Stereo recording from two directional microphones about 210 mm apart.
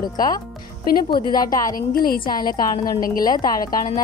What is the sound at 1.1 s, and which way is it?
Speech, 20° left (ahead or behind).